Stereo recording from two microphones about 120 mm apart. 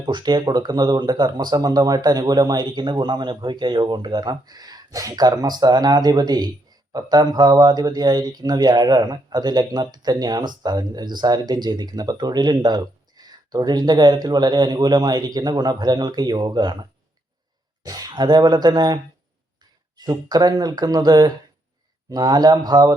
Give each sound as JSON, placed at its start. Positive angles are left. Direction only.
{"t": 0.0, "sound": "speech", "side_deg": -40}
{"t": 17.8, "sound": "speech", "side_deg": -30}
{"t": 20.0, "sound": "speech", "side_deg": -35}